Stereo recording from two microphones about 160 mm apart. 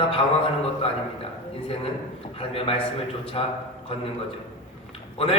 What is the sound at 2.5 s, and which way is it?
A man's voice, 35° left (ahead or behind).